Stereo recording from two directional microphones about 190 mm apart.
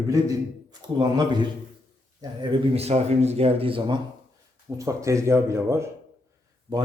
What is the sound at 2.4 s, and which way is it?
Speech, 35° right (ahead or behind).